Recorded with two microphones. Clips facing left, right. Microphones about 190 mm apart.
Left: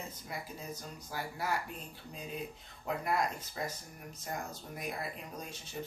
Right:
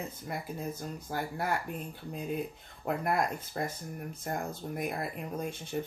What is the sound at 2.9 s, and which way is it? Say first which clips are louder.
Speech: right 3 dB; 55° right (ahead or behind).